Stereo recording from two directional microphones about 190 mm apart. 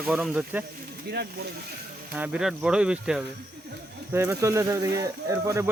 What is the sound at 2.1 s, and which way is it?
Speech, 5° right (ahead or behind).